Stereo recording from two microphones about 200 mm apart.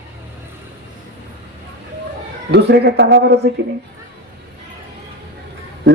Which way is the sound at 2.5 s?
55° right (ahead or behind).